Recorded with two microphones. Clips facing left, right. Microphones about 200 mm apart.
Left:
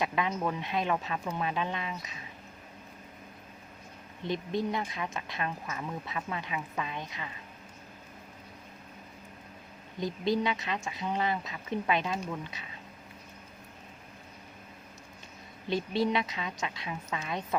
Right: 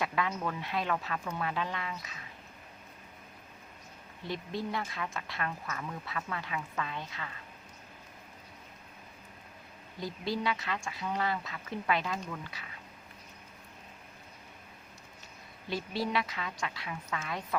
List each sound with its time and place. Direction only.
0.0 s speech: 20° left (ahead or behind)
4.2 s speech: 20° left (ahead or behind)
10.0 s speech: 20° left (ahead or behind)
15.7 s speech: 20° left (ahead or behind)